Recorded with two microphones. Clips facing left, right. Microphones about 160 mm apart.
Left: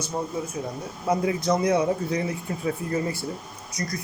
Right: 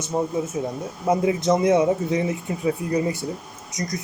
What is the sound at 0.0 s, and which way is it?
Speech, 20° right (ahead or behind).